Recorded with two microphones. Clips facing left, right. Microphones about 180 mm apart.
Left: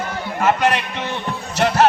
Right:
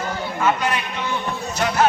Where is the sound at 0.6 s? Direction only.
75° left (ahead or behind).